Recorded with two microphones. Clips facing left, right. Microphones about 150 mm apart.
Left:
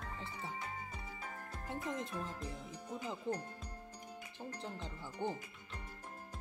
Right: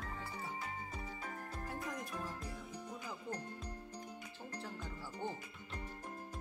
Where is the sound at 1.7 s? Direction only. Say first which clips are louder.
Left 4 dB; 25° left (ahead or behind).